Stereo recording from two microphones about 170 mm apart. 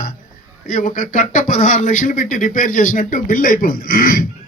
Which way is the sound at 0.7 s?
50° left (ahead or behind).